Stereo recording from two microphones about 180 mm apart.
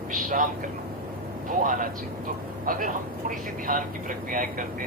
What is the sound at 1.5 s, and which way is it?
Speech, 50° right (ahead or behind).